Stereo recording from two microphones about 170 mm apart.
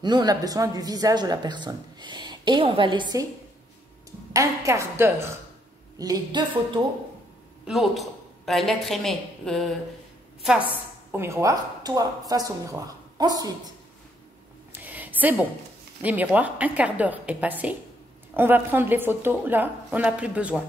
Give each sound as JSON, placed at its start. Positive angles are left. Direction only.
{"t": 0.0, "sound": "speech", "side_deg": -25}
{"t": 4.3, "sound": "speech", "side_deg": -20}
{"t": 7.6, "sound": "a woman's voice", "side_deg": 0}
{"t": 11.1, "sound": "speech", "side_deg": -15}
{"t": 14.7, "sound": "a sound", "side_deg": -10}
{"t": 16.0, "sound": "speech", "side_deg": -10}